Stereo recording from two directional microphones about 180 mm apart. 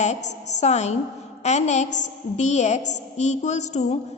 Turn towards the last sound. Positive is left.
turn(degrees=40)  # may be behind; listen again after turning